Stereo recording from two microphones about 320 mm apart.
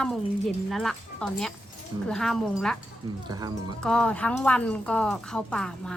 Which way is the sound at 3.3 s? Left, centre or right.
Centre.